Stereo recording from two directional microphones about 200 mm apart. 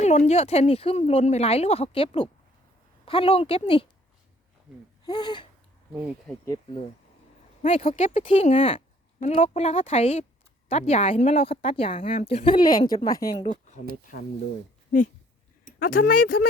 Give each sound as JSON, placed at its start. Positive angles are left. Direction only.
{"t": 0.0, "sound": "speech", "side_deg": 35}
{"t": 5.0, "sound": "speech", "side_deg": 20}
{"t": 5.9, "sound": "speech", "side_deg": -5}
{"t": 6.4, "sound": "speech", "side_deg": 20}
{"t": 7.9, "sound": "speech", "side_deg": 40}
{"t": 8.3, "sound": "speech", "side_deg": 30}
{"t": 13.3, "sound": "speech", "side_deg": 35}
{"t": 15.8, "sound": "speech", "side_deg": 45}